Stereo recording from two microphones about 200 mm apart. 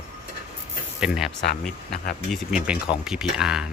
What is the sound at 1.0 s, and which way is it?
Speech, 5° right (ahead or behind).